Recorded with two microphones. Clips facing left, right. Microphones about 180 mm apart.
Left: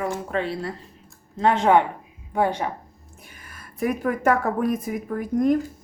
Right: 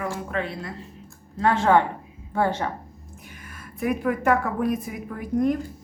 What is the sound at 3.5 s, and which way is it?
Speech, 40° left (ahead or behind).